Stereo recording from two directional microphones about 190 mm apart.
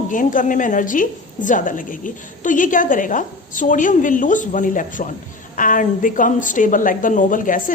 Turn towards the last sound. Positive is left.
turn(degrees=45)  # may be behind; listen again after turning